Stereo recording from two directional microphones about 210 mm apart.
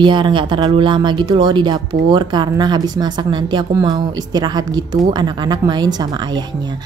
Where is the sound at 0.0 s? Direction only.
20° right (ahead or behind).